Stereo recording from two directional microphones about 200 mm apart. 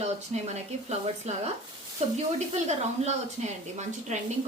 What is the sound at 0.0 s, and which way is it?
Speech, 35° right (ahead or behind).